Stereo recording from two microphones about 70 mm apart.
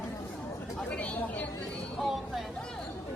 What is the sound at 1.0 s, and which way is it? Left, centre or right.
Speech, centre.